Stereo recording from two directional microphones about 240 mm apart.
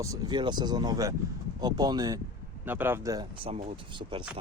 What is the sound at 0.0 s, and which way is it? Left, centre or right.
Speech, centre.